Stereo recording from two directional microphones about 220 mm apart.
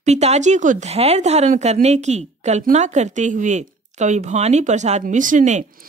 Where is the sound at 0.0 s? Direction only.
30° right (ahead or behind).